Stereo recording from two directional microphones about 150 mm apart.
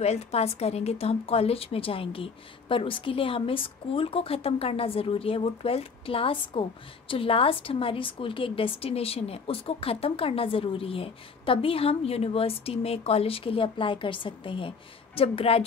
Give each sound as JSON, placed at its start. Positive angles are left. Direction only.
{"t": 0.0, "sound": "a woman's voice", "side_deg": 45}